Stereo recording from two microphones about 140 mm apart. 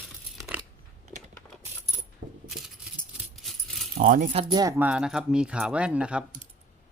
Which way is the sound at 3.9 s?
70° right (ahead or behind).